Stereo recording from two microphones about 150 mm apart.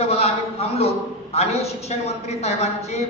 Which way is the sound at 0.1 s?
45° left (ahead or behind).